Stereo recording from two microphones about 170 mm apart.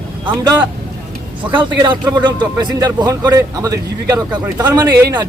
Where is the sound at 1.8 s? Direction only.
25° right (ahead or behind).